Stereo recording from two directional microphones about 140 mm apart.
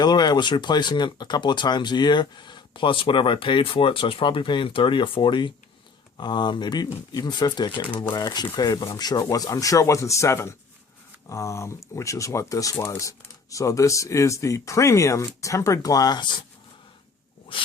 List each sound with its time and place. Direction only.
0.0 s speech: 30° left (ahead or behind)
17.5 s speech: 40° left (ahead or behind)